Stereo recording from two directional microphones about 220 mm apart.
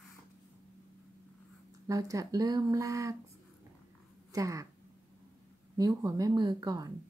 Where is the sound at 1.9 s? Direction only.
15° right (ahead or behind).